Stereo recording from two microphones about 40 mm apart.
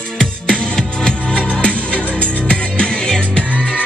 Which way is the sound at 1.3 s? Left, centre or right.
Left.